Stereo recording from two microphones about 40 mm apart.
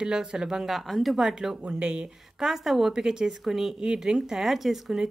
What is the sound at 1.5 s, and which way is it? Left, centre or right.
Speech, right.